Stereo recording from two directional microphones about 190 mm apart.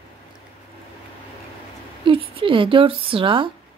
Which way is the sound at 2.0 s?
30° right (ahead or behind).